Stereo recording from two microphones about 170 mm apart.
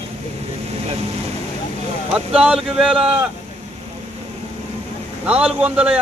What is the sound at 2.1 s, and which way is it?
Speech, 5° right (ahead or behind).